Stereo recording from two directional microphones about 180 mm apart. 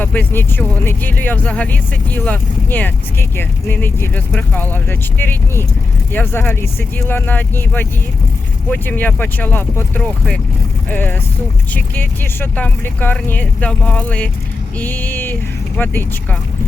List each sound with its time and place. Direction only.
0.0 s speech: 10° left (ahead or behind)